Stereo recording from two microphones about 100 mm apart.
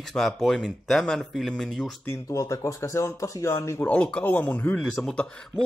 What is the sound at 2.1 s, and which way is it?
Speech, 30° left (ahead or behind).